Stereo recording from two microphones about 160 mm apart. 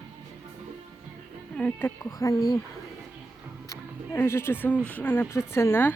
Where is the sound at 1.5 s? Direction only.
10° left (ahead or behind).